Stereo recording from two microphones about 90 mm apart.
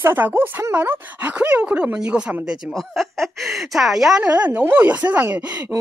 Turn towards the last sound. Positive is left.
turn(degrees=-15)  # may be behind; listen again after turning